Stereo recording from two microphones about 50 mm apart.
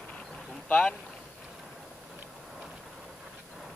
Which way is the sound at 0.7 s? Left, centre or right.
Left.